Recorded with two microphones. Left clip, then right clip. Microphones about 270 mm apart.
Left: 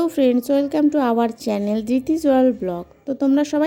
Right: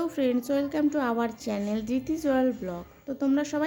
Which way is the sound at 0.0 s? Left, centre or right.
Left.